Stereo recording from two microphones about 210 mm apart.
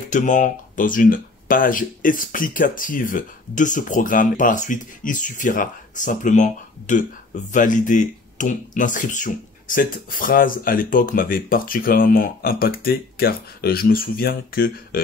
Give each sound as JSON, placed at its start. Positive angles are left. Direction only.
{"t": 0.1, "sound": "speech", "side_deg": 35}